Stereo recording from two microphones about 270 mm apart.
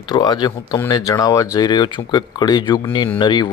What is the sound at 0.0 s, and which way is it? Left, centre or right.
Speech, centre.